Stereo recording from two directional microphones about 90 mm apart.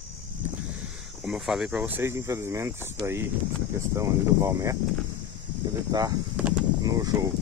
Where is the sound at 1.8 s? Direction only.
25° right (ahead or behind).